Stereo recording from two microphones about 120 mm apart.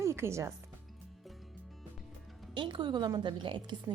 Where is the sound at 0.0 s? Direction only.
25° right (ahead or behind).